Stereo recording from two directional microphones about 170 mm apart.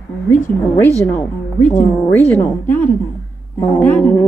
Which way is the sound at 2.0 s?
10° left (ahead or behind).